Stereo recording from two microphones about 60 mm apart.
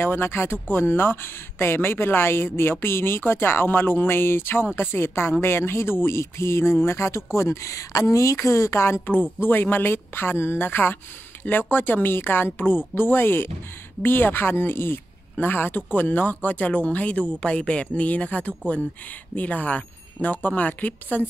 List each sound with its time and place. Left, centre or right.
0.0 s speech: left
9.0 s speech: left